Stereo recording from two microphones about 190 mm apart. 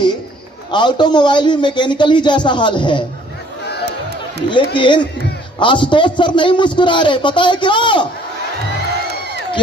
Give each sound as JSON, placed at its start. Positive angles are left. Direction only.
{"t": 0.7, "sound": "a man's voice", "side_deg": 25}
{"t": 4.5, "sound": "a man's voice", "side_deg": 25}